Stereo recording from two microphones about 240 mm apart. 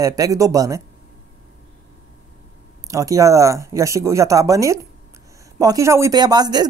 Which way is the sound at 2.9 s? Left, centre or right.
Centre.